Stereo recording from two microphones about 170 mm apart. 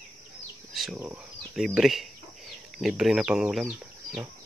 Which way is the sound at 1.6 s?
Centre (ahead or behind).